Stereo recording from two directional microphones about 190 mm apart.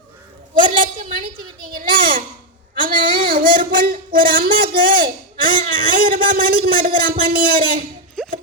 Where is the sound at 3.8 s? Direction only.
50° right (ahead or behind).